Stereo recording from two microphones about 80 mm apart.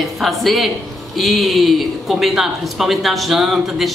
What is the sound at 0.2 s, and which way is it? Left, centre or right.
Speech, centre.